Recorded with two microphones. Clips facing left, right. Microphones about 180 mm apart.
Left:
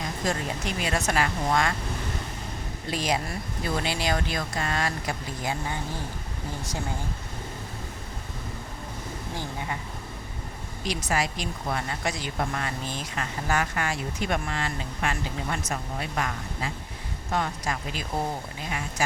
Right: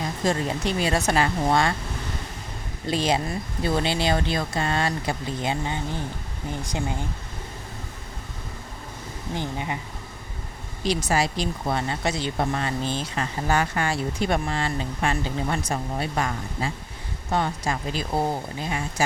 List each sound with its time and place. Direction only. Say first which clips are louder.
0.0 s speech: right 4 dB; 30° right (ahead or behind)
2.9 s speech: right 4 dB; 25° right (ahead or behind)
9.3 s speech: right 5 dB; 20° right (ahead or behind)
10.8 s speech: right 5 dB; 30° right (ahead or behind)